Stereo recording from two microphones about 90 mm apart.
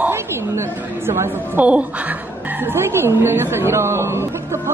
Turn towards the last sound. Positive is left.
turn(degrees=-30)  # may be behind; listen again after turning